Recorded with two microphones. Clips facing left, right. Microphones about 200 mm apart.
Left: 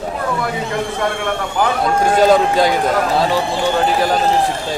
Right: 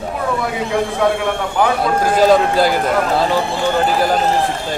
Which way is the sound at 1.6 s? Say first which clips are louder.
Even; centre (ahead or behind).